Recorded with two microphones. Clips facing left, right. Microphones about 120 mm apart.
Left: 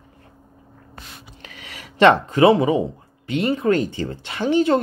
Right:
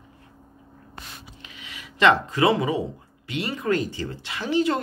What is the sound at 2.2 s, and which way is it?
Speech, 25° left (ahead or behind).